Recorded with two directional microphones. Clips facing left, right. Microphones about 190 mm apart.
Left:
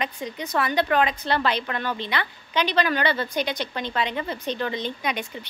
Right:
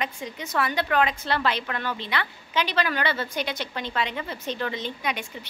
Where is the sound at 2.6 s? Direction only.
5° right (ahead or behind).